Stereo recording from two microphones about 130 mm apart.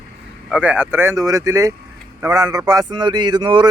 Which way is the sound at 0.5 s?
10° right (ahead or behind).